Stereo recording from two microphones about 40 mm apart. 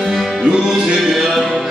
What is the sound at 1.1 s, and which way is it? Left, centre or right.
Music, centre.